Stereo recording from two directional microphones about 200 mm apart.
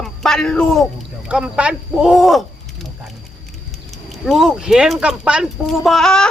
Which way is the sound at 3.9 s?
Centre (ahead or behind).